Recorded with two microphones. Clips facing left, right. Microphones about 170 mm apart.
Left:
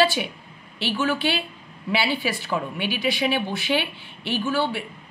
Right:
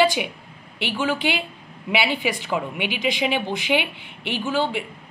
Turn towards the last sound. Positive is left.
turn(degrees=-15)  # may be behind; listen again after turning